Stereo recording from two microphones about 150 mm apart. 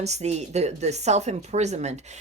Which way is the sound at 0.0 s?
45° right (ahead or behind).